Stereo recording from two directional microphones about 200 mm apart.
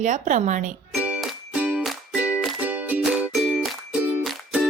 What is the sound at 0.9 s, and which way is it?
Music, 5° right (ahead or behind).